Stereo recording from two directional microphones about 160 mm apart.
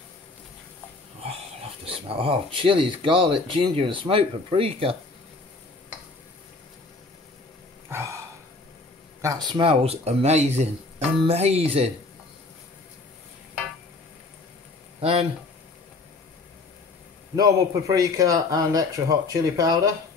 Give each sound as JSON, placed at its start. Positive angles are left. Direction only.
{"t": 1.2, "sound": "speech", "side_deg": -35}
{"t": 9.2, "sound": "speech", "side_deg": -25}
{"t": 15.0, "sound": "speech", "side_deg": -35}
{"t": 17.4, "sound": "speech", "side_deg": -25}